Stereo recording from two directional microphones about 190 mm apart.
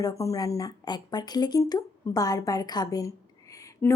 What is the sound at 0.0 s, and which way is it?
Speech, 20° left (ahead or behind).